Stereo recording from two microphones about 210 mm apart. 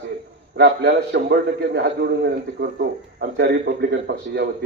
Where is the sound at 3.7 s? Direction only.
40° right (ahead or behind).